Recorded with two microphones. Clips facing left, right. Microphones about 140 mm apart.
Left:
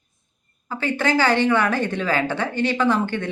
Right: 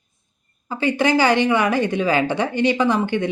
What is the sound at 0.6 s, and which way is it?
A woman's voice, 15° right (ahead or behind).